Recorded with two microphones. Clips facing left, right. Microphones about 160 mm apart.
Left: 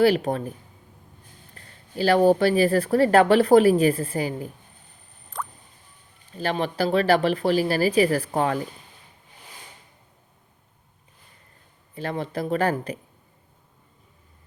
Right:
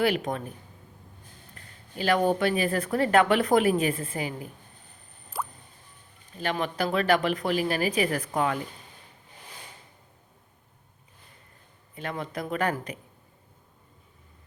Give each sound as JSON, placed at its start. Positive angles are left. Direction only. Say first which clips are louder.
{"t": 0.0, "sound": "speech", "louder": "left 6 dB", "side_deg": 35}
{"t": 1.5, "sound": "speech", "louder": "left 7 dB", "side_deg": 35}
{"t": 5.3, "sound": "music", "louder": "even", "side_deg": -10}
{"t": 6.3, "sound": "speech", "louder": "left 4 dB", "side_deg": 35}
{"t": 11.9, "sound": "speech", "louder": "left 5 dB", "side_deg": 35}